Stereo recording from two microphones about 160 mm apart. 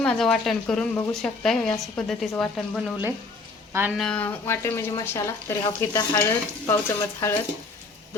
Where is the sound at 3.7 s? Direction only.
15° right (ahead or behind).